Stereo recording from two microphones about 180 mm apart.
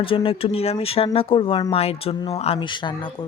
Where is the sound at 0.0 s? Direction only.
30° left (ahead or behind).